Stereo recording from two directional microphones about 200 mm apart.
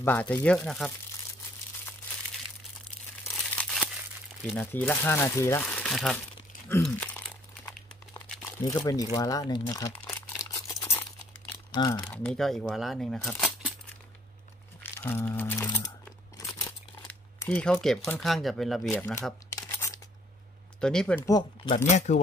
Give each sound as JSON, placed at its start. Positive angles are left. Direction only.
{"t": 0.0, "sound": "speech", "side_deg": 10}
{"t": 3.6, "sound": "crumpling", "side_deg": 0}
{"t": 4.5, "sound": "speech", "side_deg": 10}
{"t": 6.7, "sound": "crumpling", "side_deg": 10}
{"t": 8.4, "sound": "speech", "side_deg": 15}
{"t": 9.5, "sound": "crumpling", "side_deg": 20}
{"t": 12.1, "sound": "speech", "side_deg": 5}
{"t": 14.8, "sound": "speech", "side_deg": 10}
{"t": 17.1, "sound": "speech", "side_deg": 10}
{"t": 19.5, "sound": "a sound", "side_deg": 15}
{"t": 20.8, "sound": "speech", "side_deg": 5}
{"t": 21.3, "sound": "speech", "side_deg": 20}
{"t": 21.7, "sound": "speech", "side_deg": 40}